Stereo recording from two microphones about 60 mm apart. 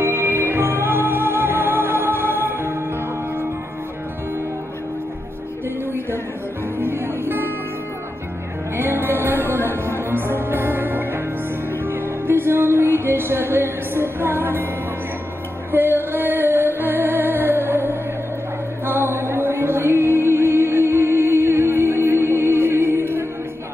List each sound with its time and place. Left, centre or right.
0.0 s music: right
6.8 s music: right
8.7 s music: right
15.7 s music: right